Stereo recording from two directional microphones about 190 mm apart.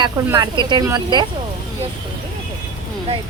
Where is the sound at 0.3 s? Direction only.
25° right (ahead or behind).